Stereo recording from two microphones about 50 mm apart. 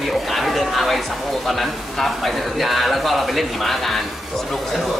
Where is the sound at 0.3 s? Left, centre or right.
Centre.